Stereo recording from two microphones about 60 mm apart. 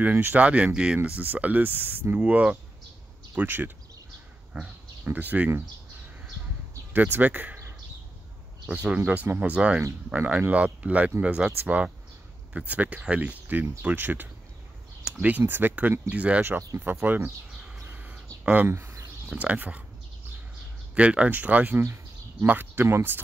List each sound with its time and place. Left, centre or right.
0.0 s speech: right
5.1 s speech: right
6.9 s speech: right
8.6 s speech: right
16.1 s speech: right
16.4 s speech: right
17.0 s speech: right
17.8 s bird: right
18.4 s speech: right
20.9 s speech: centre; by 23.2 s right